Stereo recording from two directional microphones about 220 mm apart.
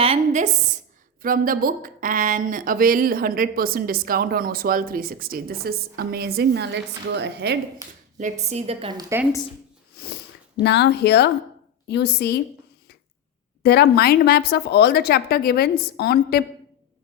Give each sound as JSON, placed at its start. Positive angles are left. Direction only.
{"t": 0.0, "sound": "a woman's voice", "side_deg": -30}
{"t": 1.2, "sound": "a woman's voice", "side_deg": -40}
{"t": 8.2, "sound": "a woman's voice", "side_deg": -30}
{"t": 10.6, "sound": "speech", "side_deg": 50}
{"t": 13.6, "sound": "speech", "side_deg": 45}